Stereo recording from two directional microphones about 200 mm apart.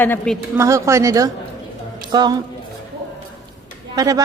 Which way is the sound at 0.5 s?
15° right (ahead or behind).